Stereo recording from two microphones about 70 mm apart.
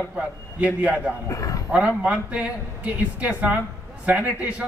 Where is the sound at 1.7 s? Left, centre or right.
Centre.